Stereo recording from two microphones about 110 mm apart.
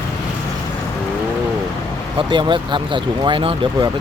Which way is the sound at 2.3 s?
50° right (ahead or behind).